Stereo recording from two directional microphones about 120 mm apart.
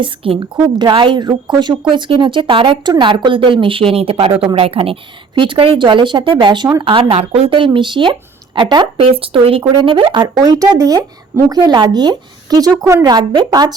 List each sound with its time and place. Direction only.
0.0 s speech: 40° right (ahead or behind)
7.2 s speech: 60° right (ahead or behind); by 10.2 s 40° right (ahead or behind)
10.4 s speech: 30° right (ahead or behind)